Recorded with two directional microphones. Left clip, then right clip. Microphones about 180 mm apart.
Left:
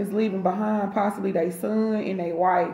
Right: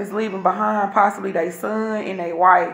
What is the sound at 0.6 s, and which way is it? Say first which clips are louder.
Speech: right 8 dB; 15° right (ahead or behind).